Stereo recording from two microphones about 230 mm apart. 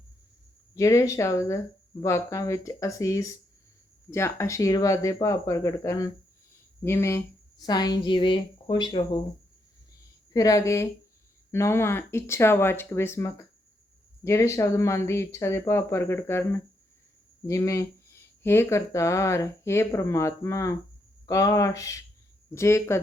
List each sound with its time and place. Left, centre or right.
0.7 s speech: centre
10.3 s speech: centre